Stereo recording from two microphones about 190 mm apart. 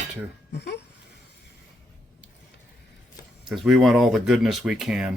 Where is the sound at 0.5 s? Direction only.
60° left (ahead or behind).